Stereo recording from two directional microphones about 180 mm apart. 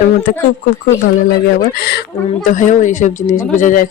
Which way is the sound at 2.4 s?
45° left (ahead or behind).